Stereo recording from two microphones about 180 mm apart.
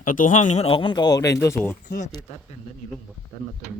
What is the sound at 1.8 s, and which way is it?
Speech, 45° left (ahead or behind).